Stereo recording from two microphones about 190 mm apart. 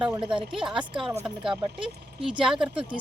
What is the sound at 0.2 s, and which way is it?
Speech, 25° right (ahead or behind).